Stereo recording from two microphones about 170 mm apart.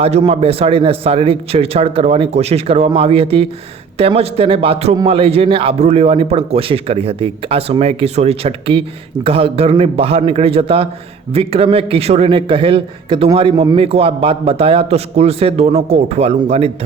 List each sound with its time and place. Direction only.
0.0 s a man's voice: 35° right (ahead or behind)